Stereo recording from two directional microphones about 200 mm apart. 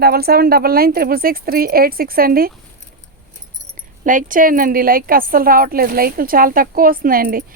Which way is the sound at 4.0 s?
40° right (ahead or behind).